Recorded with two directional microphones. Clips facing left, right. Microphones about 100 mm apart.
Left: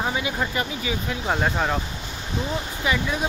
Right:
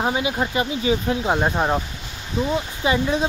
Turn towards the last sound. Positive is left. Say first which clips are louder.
# right 4 dB
turn(degrees=-30)  # may be behind; listen again after turning